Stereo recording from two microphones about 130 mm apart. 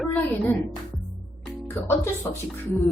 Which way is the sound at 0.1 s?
15° left (ahead or behind).